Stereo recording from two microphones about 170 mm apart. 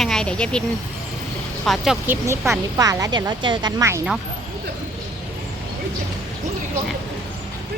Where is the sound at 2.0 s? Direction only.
15° right (ahead or behind).